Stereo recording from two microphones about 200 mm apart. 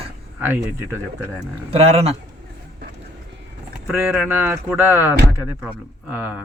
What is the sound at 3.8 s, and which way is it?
Speech, 5° right (ahead or behind).